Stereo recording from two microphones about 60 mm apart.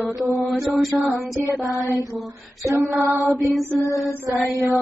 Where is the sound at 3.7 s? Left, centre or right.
Left.